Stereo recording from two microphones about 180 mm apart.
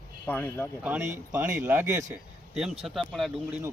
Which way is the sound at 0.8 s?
10° right (ahead or behind).